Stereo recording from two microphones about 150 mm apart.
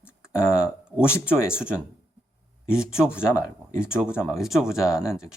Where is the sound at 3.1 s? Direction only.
15° left (ahead or behind).